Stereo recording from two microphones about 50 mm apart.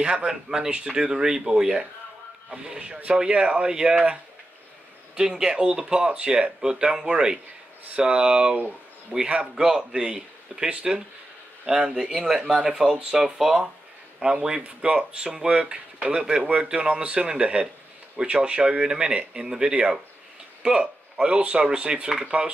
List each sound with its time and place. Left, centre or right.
0.0 s speech: centre
5.1 s speech: centre
14.2 s speech: centre